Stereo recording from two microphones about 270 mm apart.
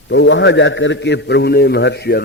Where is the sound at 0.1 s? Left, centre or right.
Left.